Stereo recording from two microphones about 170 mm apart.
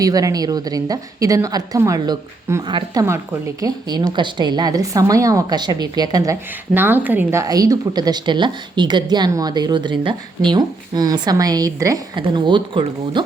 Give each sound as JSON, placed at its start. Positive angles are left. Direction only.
{"t": 0.0, "sound": "a woman's voice", "side_deg": -20}
{"t": 6.7, "sound": "a woman's voice", "side_deg": -10}